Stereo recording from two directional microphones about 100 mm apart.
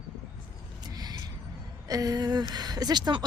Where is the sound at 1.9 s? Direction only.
35° right (ahead or behind).